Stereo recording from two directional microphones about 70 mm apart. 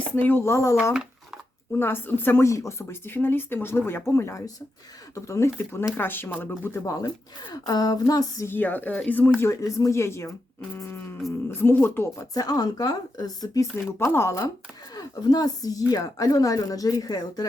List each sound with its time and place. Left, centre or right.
0.2 s a woman's voice: left
0.4 s speech: left
1.7 s speech: left
2.5 s speech: left
6.0 s a woman's voice: left
6.8 s speech: left
7.5 s speech: left
8.4 s a woman's voice: left
9.4 s speech: left
12.2 s speech: left
14.0 s speech: left
14.9 s speech: left